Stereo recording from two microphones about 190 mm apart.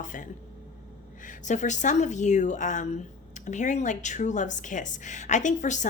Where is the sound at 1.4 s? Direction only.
40° left (ahead or behind).